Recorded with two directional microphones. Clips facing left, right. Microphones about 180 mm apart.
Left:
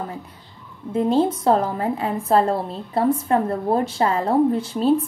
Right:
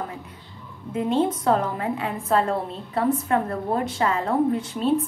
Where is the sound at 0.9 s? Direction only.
35° left (ahead or behind).